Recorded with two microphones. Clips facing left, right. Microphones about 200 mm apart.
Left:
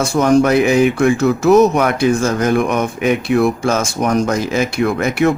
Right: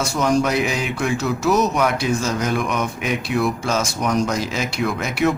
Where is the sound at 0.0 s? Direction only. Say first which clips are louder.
Left 7 dB; 55° left (ahead or behind).